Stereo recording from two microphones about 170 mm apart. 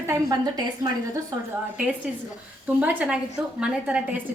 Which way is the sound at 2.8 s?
10° right (ahead or behind).